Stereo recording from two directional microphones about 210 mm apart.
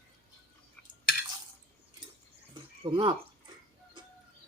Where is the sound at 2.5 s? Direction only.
20° right (ahead or behind).